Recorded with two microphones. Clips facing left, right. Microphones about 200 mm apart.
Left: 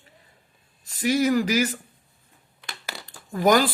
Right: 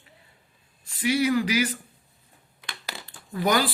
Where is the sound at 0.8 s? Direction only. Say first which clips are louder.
Left 2 dB; 40° left (ahead or behind).